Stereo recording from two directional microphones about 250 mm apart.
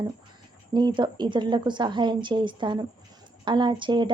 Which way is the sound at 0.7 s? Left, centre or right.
Centre.